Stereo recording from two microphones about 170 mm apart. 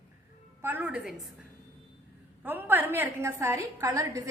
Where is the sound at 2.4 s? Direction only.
10° right (ahead or behind).